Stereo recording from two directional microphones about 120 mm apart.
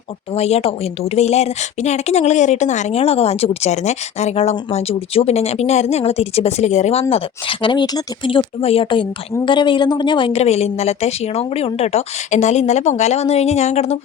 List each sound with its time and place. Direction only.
0.3 s speech: 60° left (ahead or behind); by 10.3 s 40° left (ahead or behind)
10.3 s speech: 60° left (ahead or behind)